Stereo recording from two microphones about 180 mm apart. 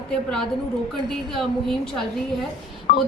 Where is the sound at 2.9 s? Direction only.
55° left (ahead or behind).